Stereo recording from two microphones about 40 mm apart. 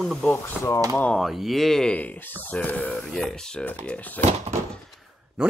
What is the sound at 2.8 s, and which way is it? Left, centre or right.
Speech, left.